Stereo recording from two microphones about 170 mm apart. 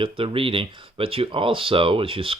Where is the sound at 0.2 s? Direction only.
30° right (ahead or behind).